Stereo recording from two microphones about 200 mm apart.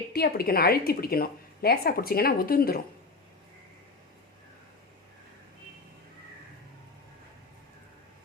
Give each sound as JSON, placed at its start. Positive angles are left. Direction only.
{"t": 0.1, "sound": "a woman's voice", "side_deg": 50}